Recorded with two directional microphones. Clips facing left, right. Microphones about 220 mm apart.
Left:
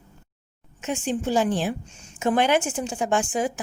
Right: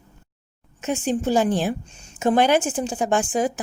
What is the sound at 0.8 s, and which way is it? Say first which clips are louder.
Speech: right 3 dB; 40° right (ahead or behind).